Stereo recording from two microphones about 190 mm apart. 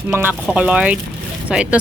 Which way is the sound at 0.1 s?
10° right (ahead or behind).